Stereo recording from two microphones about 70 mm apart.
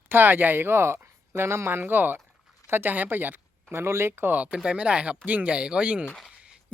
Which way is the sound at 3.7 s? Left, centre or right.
Right.